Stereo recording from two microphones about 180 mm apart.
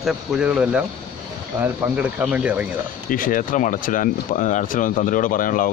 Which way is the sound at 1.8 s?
10° right (ahead or behind).